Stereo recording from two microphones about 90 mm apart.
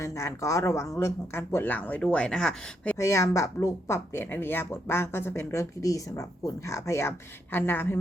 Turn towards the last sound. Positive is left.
turn(degrees=20)  # may be behind; listen again after turning